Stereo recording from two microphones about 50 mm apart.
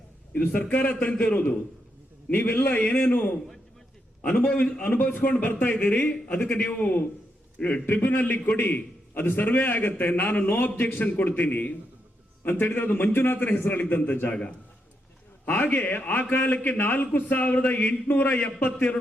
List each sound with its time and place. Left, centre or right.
0.3 s a man's voice: left
2.3 s a man's voice: left
7.9 s a man's voice: left
15.4 s a man's voice: left